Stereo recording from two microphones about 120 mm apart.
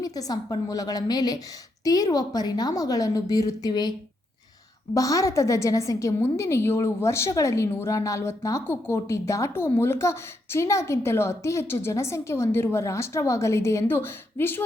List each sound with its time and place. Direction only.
0.0 s a woman's voice: 30° left (ahead or behind)
4.9 s a woman's voice: 30° left (ahead or behind)